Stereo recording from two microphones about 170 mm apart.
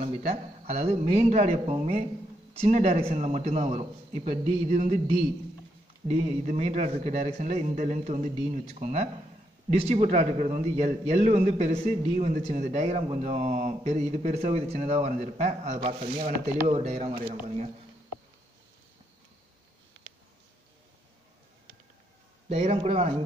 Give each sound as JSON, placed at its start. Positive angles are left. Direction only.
{"t": 0.8, "sound": "a man's voice", "side_deg": -40}
{"t": 16.3, "sound": "speech", "side_deg": -60}
{"t": 16.7, "sound": "speech", "side_deg": -40}
{"t": 22.5, "sound": "speech", "side_deg": -35}